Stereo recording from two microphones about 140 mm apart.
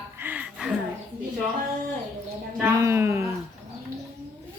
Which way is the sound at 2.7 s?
20° right (ahead or behind).